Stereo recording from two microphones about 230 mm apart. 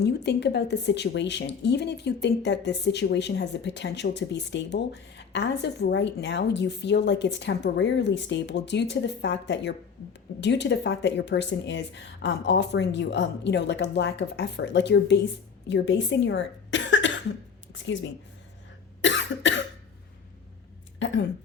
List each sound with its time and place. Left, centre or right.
0.0 s speech: left
19.0 s cough: left